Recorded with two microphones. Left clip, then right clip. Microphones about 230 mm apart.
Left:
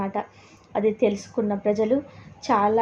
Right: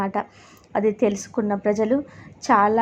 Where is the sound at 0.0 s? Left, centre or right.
Centre.